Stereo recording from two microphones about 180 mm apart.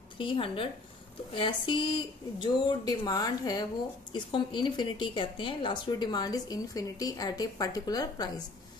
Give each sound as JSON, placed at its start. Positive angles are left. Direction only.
{"t": 0.2, "sound": "a woman's voice", "side_deg": 30}